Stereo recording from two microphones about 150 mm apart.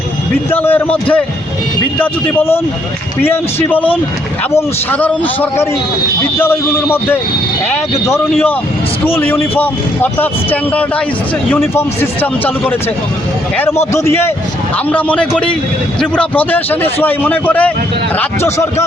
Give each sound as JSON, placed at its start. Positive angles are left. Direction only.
{"t": 0.5, "sound": "speech", "side_deg": 10}
{"t": 13.9, "sound": "speech", "side_deg": 15}